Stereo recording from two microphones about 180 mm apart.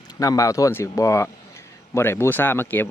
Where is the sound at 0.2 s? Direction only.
20° left (ahead or behind).